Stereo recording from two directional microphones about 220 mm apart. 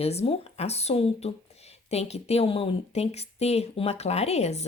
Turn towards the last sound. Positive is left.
turn(degrees=30)  # may be behind; listen again after turning